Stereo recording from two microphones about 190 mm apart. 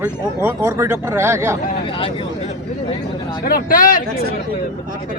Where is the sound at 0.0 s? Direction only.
15° right (ahead or behind).